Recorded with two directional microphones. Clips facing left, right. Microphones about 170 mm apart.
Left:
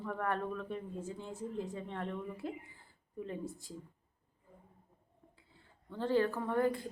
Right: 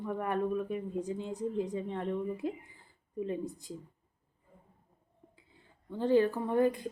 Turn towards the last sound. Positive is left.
turn(degrees=-20)  # may be behind; listen again after turning